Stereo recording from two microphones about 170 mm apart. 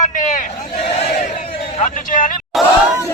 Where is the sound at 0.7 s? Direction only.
40° left (ahead or behind).